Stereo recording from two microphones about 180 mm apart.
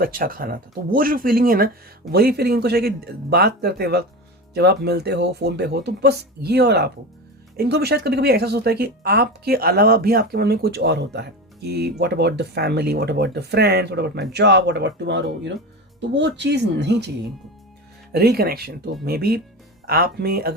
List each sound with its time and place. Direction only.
0.0 s speech: 55° right (ahead or behind); by 17.1 s 70° right (ahead or behind)
18.1 s speech: 60° right (ahead or behind)